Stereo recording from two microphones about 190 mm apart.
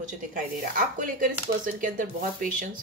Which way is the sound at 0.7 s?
45° right (ahead or behind).